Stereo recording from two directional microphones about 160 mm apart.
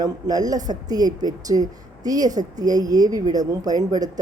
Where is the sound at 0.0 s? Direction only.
25° right (ahead or behind).